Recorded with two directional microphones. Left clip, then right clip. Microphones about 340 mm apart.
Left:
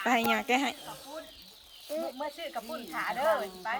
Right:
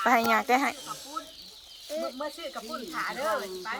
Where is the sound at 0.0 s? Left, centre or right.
Centre.